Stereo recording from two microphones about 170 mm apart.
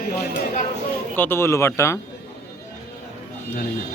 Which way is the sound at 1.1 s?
15° left (ahead or behind).